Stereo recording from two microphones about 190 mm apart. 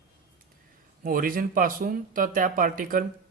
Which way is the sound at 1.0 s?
45° right (ahead or behind).